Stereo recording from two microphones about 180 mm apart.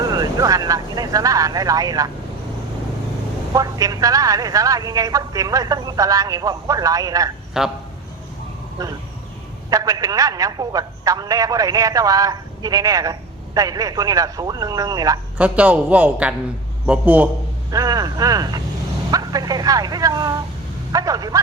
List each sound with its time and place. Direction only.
0.0 s a man's voice: 20° right (ahead or behind)
3.5 s a man's voice: 20° right (ahead or behind)
7.6 s speech: 5° right (ahead or behind)
8.8 s a man's voice: 20° right (ahead or behind)
15.4 s a man's voice: 5° right (ahead or behind)
17.7 s a man's voice: 20° right (ahead or behind)